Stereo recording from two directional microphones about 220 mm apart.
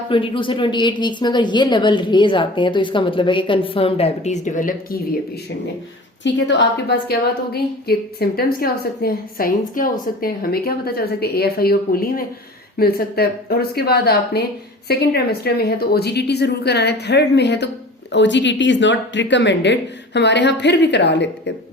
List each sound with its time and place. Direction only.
0.1 s speech: 25° left (ahead or behind)
6.2 s a woman's voice: 55° left (ahead or behind)